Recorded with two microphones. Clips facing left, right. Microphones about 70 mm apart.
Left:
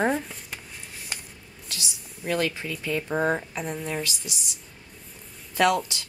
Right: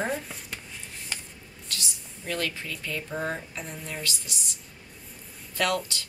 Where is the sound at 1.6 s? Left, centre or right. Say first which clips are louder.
Even; centre.